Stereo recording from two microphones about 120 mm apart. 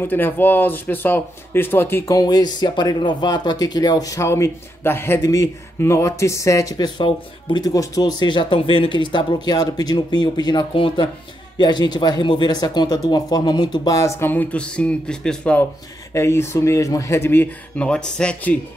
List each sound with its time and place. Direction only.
0.0 s speech: 15° left (ahead or behind)
7.0 s speech: 40° left (ahead or behind)
13.9 s speech: 25° left (ahead or behind); by 15.6 s 10° left (ahead or behind)
16.1 s speech: 25° left (ahead or behind)